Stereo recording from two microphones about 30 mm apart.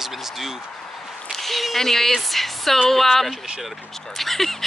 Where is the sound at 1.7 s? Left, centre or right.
Centre.